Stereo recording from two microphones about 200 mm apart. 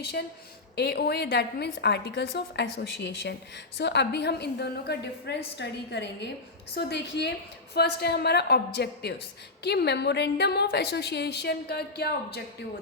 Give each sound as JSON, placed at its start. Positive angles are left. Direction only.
{"t": 0.0, "sound": "a woman's voice", "side_deg": 55}